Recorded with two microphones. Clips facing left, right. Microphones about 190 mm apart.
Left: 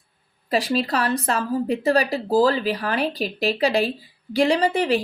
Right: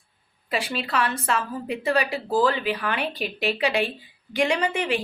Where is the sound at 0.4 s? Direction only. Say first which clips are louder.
Left 6 dB; 35° left (ahead or behind).